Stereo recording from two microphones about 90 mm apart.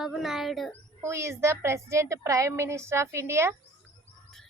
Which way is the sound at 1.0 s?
30° right (ahead or behind).